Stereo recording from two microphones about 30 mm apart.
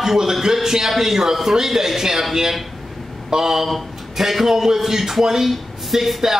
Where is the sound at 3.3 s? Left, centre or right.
Centre.